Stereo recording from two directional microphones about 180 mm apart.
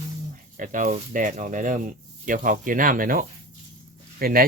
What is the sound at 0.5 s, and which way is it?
Speech, 45° right (ahead or behind).